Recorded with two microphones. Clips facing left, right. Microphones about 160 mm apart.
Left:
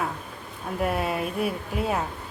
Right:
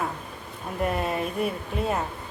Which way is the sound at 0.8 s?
5° left (ahead or behind).